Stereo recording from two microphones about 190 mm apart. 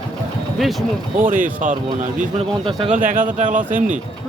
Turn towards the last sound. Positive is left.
turn(degrees=-45)  # may be behind; listen again after turning